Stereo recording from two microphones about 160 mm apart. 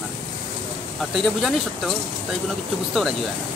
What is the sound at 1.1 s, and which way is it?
Speech, centre (ahead or behind).